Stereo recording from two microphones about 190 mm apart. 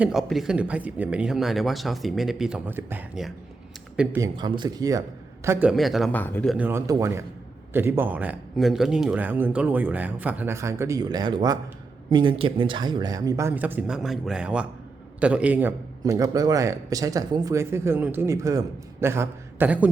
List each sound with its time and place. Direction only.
0.0 s speech: centre (ahead or behind)
4.2 s speech: 20° right (ahead or behind)
5.5 s speech: 10° right (ahead or behind); by 6.5 s 10° left (ahead or behind)
6.5 s a man's voice: 10° right (ahead or behind)